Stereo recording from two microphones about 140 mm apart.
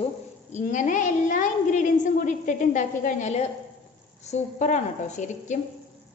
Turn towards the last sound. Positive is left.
turn(degrees=60)  # may be behind; listen again after turning